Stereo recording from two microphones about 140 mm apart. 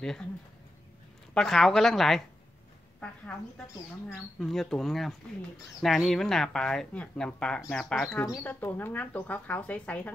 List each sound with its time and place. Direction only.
1.3 s speech: 5° left (ahead or behind)